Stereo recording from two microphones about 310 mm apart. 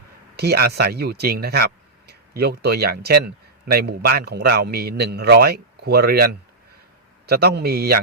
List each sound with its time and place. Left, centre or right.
0.3 s speech: right